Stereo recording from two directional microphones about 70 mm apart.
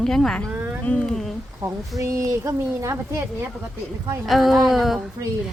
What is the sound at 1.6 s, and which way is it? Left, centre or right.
Speech, right.